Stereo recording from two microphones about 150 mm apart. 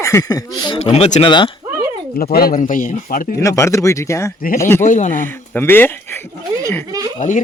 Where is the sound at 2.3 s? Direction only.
80° left.